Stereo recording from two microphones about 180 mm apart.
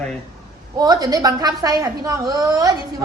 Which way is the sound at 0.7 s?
20° right (ahead or behind).